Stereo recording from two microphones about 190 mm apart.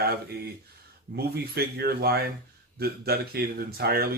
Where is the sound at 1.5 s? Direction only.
55° right (ahead or behind).